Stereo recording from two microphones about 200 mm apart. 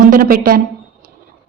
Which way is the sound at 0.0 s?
45° right (ahead or behind).